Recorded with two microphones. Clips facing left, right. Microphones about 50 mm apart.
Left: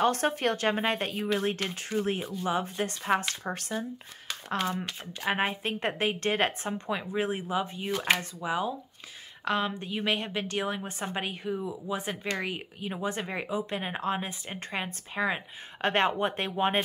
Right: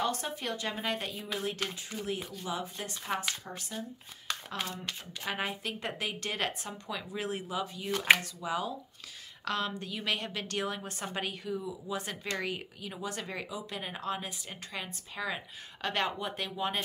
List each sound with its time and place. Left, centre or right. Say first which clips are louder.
0.0 s a woman's voice: left 8 dB; left
3.4 s speech: left 8 dB; left
5.2 s a woman's voice: left 6 dB; left
12.9 s speech: left 6 dB; left